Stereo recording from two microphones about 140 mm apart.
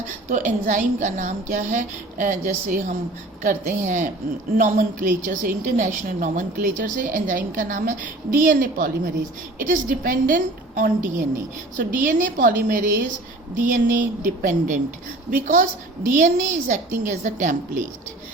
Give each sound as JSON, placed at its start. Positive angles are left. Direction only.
{"t": 0.3, "sound": "a woman's voice", "side_deg": -65}
{"t": 16.0, "sound": "a woman's voice", "side_deg": -70}